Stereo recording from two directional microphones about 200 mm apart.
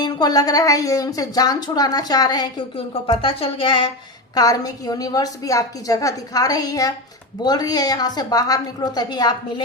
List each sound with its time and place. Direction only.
0.0 s a woman's voice: 20° left (ahead or behind)